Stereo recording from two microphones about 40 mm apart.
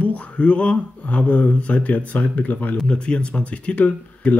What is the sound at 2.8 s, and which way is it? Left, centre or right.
Speech, left.